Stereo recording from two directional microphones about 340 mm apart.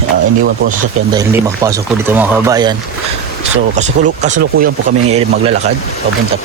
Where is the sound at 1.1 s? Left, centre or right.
Centre.